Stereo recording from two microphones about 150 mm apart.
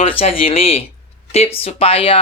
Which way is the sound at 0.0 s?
40° left (ahead or behind).